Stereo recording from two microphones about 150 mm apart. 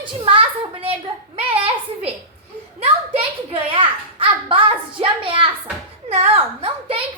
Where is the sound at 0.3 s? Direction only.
35° right (ahead or behind).